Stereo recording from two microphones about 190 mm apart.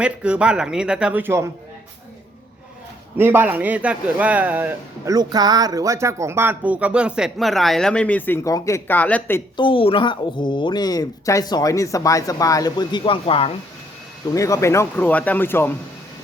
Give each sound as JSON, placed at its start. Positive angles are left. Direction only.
{"t": 0.0, "sound": "speech", "side_deg": -5}
{"t": 3.2, "sound": "speech", "side_deg": -10}
{"t": 5.1, "sound": "speech", "side_deg": -20}
{"t": 9.6, "sound": "speech", "side_deg": 25}
{"t": 14.3, "sound": "speech", "side_deg": 15}